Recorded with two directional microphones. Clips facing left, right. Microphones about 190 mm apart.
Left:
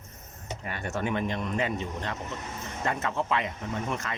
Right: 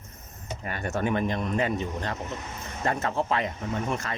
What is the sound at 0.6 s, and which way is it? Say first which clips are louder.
Speech: right 3 dB; 45° right (ahead or behind).